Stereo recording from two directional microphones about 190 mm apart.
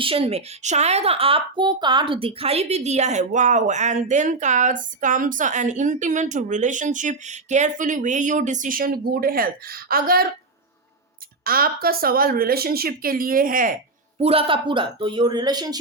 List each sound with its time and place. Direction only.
0.0 s a woman's voice: 30° right (ahead or behind); by 10.2 s 50° right (ahead or behind)
11.4 s speech: 50° right (ahead or behind)
14.2 s speech: 30° right (ahead or behind)